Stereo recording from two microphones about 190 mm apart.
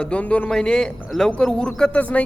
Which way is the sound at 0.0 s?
5° left (ahead or behind).